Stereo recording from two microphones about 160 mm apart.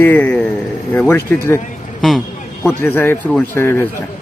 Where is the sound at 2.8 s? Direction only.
15° left (ahead or behind).